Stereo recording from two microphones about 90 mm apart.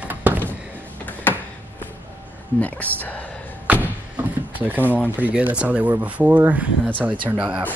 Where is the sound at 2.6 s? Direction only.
15° left (ahead or behind).